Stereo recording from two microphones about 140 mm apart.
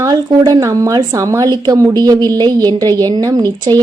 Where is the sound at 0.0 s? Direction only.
25° right (ahead or behind).